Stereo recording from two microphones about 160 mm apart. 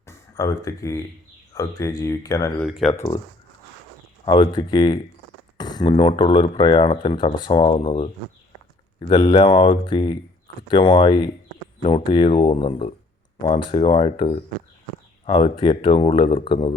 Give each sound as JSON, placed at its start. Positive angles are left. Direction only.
{"t": 0.1, "sound": "speech", "side_deg": 20}
{"t": 2.6, "sound": "speech", "side_deg": -5}
{"t": 2.9, "sound": "speech", "side_deg": 20}
{"t": 4.3, "sound": "speech", "side_deg": 30}